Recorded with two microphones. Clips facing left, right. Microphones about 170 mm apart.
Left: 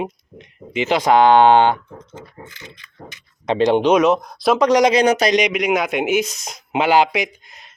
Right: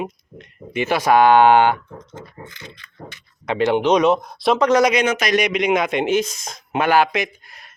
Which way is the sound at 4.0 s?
Centre (ahead or behind).